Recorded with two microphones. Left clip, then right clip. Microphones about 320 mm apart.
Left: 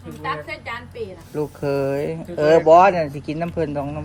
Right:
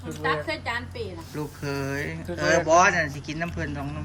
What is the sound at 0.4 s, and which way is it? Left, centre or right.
Speech, right.